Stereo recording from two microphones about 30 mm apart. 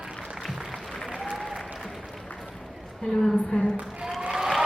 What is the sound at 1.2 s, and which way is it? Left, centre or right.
Applause, centre.